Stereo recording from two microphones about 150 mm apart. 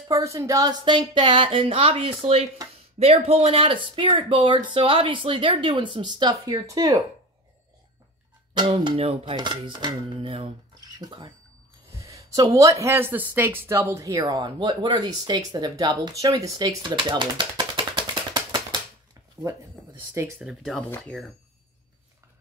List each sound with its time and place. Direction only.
0.1 s speech: 20° right (ahead or behind)
8.5 s speech: 30° right (ahead or behind)
20.0 s speech: 10° right (ahead or behind)
21.0 s speech: 5° left (ahead or behind)